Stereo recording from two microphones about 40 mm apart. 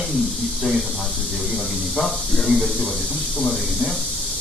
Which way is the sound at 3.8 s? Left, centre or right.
Right.